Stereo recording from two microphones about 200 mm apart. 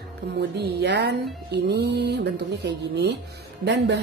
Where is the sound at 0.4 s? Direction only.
60° right (ahead or behind).